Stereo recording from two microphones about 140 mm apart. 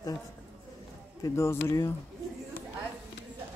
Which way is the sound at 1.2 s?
20° left (ahead or behind).